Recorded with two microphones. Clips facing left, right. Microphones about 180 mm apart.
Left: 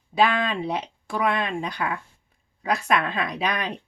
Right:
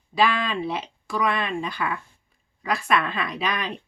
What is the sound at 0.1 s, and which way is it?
Speech, 20° left (ahead or behind).